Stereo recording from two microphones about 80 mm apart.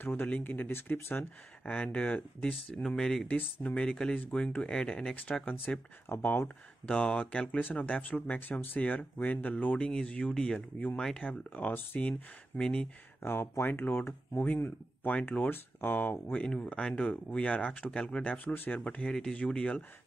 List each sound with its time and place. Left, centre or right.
0.0 s speech: left; by 3.3 s centre
3.3 s speech: centre
6.0 s speech: left
12.1 s speech: centre
13.2 s speech: left; by 19.8 s centre